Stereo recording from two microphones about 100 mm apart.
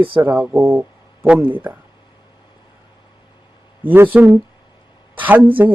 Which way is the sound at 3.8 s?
20° right (ahead or behind).